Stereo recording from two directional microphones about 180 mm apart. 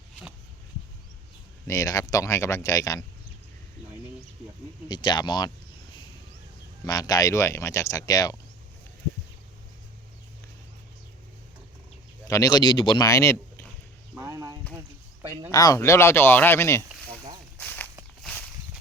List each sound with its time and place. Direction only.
1.6 s speech: 15° left (ahead or behind)
4.9 s speech: 25° left (ahead or behind)
6.8 s speech: 20° left (ahead or behind)
12.3 s speech: 20° left (ahead or behind)
14.2 s a sound: 20° right (ahead or behind)
15.5 s speech: 20° left (ahead or behind)
17.6 s walk: 10° left (ahead or behind)